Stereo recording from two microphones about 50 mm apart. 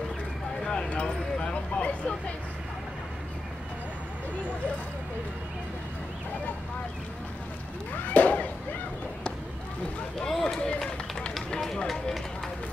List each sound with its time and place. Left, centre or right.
0.7 s vehicle: left
7.9 s a sound: left
10.1 s run: centre